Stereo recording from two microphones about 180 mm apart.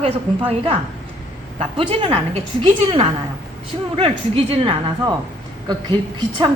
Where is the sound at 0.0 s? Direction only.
30° right (ahead or behind).